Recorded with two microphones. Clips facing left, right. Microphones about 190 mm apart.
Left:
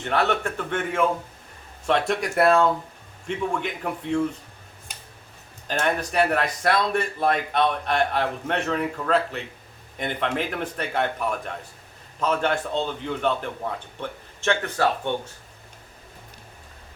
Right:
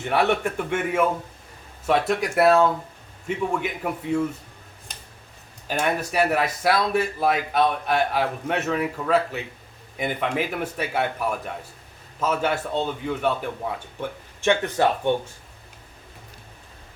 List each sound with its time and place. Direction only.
0.0 s a man's voice: 10° right (ahead or behind)
5.6 s a man's voice: 5° right (ahead or behind)